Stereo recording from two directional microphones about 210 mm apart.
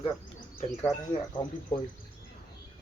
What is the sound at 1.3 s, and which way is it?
Speech, 20° left (ahead or behind).